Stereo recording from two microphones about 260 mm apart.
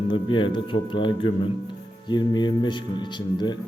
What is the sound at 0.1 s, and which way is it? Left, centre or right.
Speech, centre.